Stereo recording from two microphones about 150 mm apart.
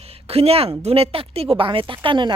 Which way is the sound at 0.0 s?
40° right (ahead or behind).